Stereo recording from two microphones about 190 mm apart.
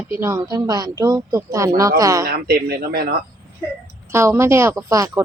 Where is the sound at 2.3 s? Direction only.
55° right (ahead or behind).